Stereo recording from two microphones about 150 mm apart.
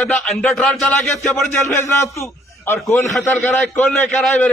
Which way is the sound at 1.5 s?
15° left (ahead or behind).